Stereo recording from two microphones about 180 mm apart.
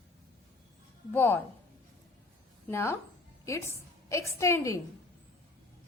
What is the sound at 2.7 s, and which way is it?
Speech, 15° left (ahead or behind).